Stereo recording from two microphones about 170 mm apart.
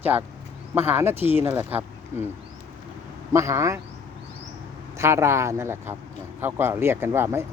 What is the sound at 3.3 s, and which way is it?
Speech, 15° right (ahead or behind).